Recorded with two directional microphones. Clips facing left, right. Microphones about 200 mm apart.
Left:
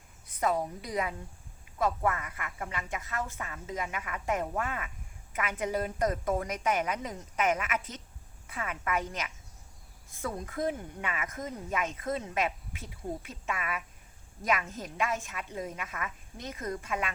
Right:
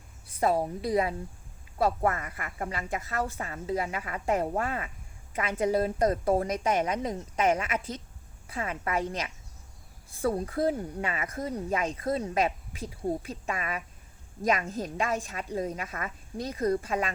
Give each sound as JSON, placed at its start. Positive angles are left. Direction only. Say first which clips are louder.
{"t": 0.3, "sound": "speech", "louder": "right 4 dB", "side_deg": -30}